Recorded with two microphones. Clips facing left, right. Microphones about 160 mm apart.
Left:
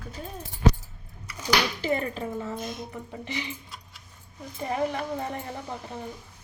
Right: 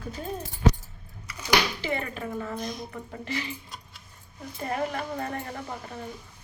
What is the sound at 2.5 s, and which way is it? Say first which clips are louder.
Speech: right 1 dB; centre (ahead or behind).